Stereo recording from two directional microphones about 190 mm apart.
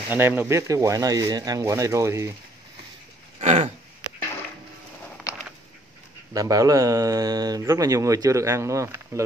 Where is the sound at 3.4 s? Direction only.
35° right (ahead or behind).